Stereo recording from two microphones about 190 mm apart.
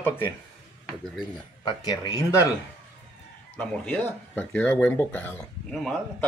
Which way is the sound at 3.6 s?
10° left (ahead or behind).